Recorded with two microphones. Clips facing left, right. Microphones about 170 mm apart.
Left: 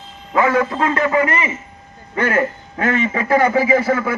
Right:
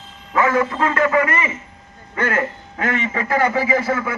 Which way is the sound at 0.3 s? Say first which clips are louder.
Left 2 dB; 30° left (ahead or behind).